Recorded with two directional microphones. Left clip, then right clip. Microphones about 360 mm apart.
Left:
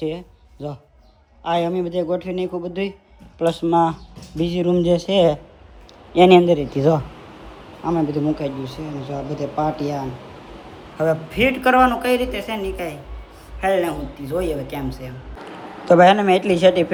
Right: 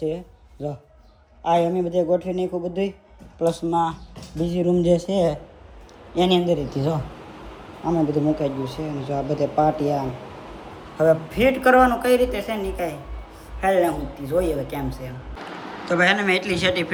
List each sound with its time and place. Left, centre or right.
0.6 s speech: centre
3.4 s a woman's voice: centre
4.4 s speech: centre
5.1 s a woman's voice: centre
6.6 s a woman's voice: centre